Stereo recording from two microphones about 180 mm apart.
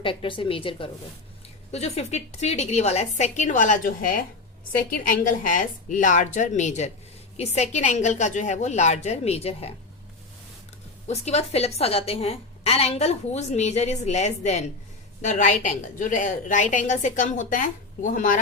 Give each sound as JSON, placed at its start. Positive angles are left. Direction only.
{"t": 0.0, "sound": "a woman's voice", "side_deg": 30}
{"t": 11.1, "sound": "a woman's voice", "side_deg": 35}